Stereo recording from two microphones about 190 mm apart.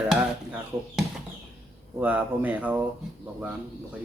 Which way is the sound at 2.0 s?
10° right (ahead or behind).